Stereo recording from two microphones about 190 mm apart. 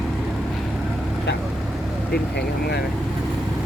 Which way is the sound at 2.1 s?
55° left (ahead or behind).